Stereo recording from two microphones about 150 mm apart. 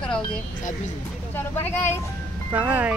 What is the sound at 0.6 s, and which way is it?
Speech, 55° left (ahead or behind).